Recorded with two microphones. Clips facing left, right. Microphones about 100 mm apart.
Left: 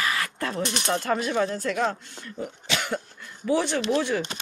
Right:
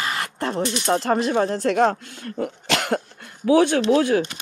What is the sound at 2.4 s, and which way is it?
Cough, 85° right.